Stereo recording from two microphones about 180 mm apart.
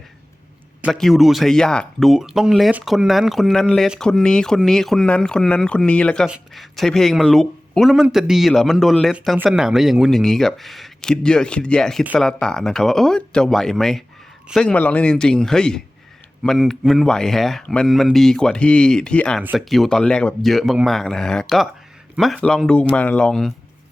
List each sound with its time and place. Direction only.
0.8 s speech: centre (ahead or behind)
19.4 s speech: 10° right (ahead or behind)
19.7 s speech: centre (ahead or behind)